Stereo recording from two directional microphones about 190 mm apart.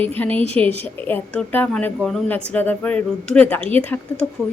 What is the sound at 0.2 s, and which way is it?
Speech, 10° left (ahead or behind).